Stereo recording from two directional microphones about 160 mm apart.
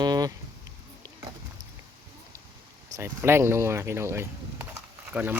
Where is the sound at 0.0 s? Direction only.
25° right (ahead or behind).